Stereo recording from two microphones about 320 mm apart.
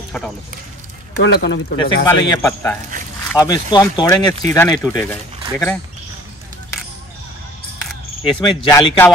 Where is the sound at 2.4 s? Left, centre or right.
Centre.